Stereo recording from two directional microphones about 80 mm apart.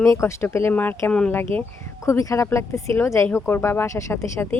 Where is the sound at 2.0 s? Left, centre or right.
Left.